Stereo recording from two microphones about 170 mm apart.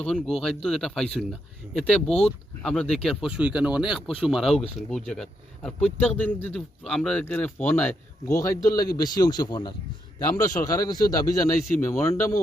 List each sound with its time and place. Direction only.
0.0 s speech: 5° left (ahead or behind)